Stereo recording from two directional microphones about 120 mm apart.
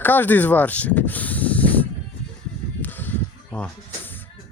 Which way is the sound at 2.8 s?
15° left (ahead or behind).